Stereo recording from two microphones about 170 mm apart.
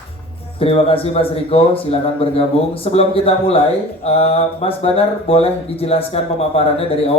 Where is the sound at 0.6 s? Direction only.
35° left (ahead or behind).